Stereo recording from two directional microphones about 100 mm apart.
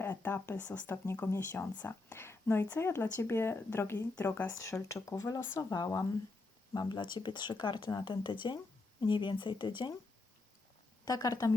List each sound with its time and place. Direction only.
0.0 s speech: 20° left (ahead or behind)
4.6 s speech: 30° left (ahead or behind)
6.7 s speech: 50° left (ahead or behind)
11.0 s speech: 40° left (ahead or behind)